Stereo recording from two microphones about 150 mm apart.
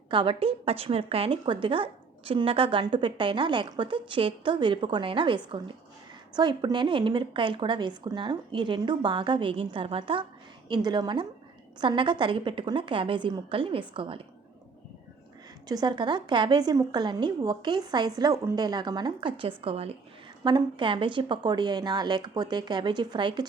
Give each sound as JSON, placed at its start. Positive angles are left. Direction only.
{"t": 0.1, "sound": "a woman's voice", "side_deg": -35}
{"t": 15.7, "sound": "a woman's voice", "side_deg": -25}